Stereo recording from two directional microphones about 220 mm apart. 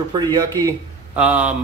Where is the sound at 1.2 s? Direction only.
5° right (ahead or behind).